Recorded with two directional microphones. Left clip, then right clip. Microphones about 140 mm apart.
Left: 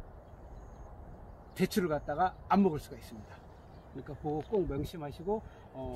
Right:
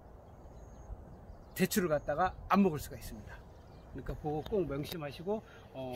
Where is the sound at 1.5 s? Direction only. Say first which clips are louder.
Even; 30° right (ahead or behind).